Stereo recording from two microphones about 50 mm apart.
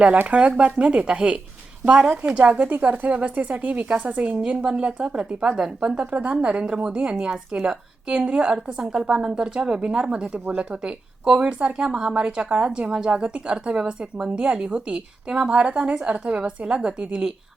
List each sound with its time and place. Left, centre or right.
0.3 s a woman's voice: right
4.4 s speech: right